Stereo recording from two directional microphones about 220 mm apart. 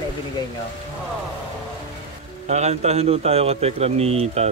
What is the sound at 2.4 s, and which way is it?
A man's voice, 30° right (ahead or behind).